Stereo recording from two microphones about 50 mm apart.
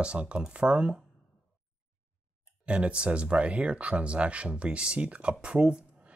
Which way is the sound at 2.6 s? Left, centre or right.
Right.